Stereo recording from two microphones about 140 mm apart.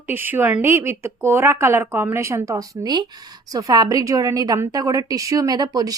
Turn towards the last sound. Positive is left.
turn(degrees=-25)  # may be behind; listen again after turning